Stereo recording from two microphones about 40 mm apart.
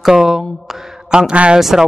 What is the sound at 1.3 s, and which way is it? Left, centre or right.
Speech, right.